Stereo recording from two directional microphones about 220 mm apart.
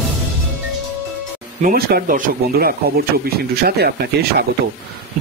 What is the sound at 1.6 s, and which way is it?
Speech, 40° right (ahead or behind).